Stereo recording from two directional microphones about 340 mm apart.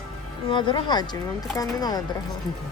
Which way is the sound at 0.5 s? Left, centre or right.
Centre.